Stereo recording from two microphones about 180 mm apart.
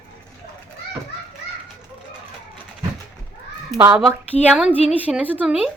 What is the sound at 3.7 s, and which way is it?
Speech, 20° right (ahead or behind).